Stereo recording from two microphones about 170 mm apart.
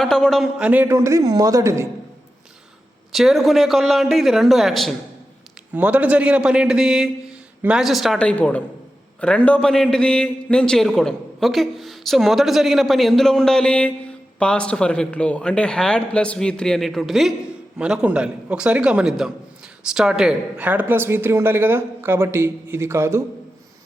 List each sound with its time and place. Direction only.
0.0 s speech: 5° left (ahead or behind); by 1.9 s 15° right (ahead or behind)
3.1 s a man's voice: centre (ahead or behind)